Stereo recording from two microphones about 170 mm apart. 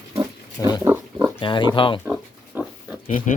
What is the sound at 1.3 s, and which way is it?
Speech, 30° left (ahead or behind).